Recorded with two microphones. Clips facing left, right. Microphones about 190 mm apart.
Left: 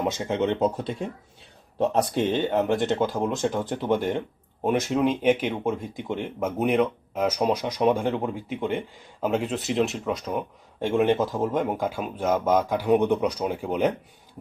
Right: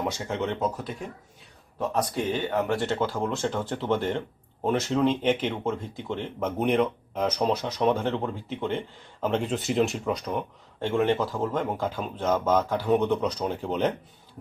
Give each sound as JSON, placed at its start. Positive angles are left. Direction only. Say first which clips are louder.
{"t": 0.0, "sound": "speech", "louder": "left 4 dB", "side_deg": 20}
{"t": 10.8, "sound": "speech", "louder": "left 2 dB", "side_deg": 15}